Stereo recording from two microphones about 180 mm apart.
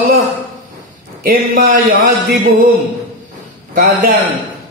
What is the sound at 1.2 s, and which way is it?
Speech, 50° right (ahead or behind).